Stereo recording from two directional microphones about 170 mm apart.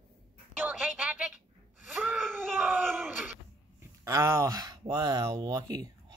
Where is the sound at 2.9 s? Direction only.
10° right (ahead or behind).